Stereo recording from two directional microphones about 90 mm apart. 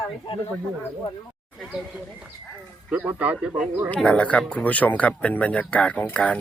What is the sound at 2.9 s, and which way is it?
Speech, 20° right (ahead or behind).